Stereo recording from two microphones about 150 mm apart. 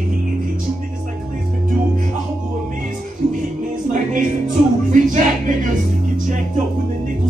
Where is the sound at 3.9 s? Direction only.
60° right (ahead or behind).